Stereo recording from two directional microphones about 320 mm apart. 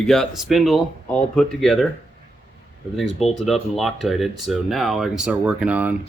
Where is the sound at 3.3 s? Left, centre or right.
Centre.